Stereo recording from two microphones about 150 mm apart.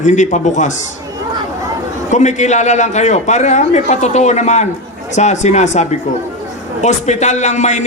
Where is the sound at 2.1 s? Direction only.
50° left (ahead or behind).